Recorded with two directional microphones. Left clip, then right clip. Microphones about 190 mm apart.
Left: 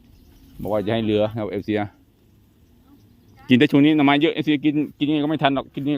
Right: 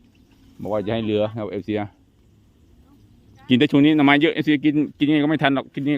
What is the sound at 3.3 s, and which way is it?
Speech, 10° left (ahead or behind).